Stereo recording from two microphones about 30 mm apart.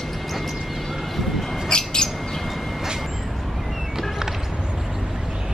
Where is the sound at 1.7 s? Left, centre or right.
Left.